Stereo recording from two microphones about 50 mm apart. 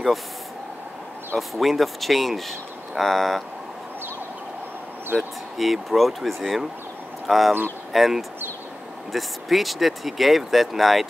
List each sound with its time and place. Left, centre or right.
1.3 s speech: centre
5.1 s speech: right
5.6 s speech: centre